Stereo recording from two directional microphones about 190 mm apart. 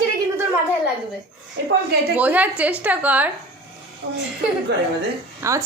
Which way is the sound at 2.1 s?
10° right (ahead or behind).